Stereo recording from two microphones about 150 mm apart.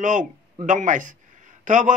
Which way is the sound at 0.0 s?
60° right (ahead or behind).